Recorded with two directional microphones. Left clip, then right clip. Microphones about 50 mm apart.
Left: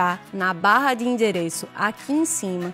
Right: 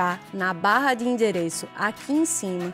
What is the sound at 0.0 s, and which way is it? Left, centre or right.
Speech, left.